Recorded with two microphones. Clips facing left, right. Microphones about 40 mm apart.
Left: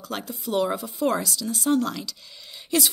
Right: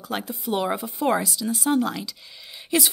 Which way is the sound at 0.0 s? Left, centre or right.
Centre.